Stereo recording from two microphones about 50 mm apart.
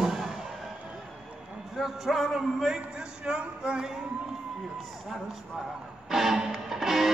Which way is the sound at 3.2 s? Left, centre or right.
Centre.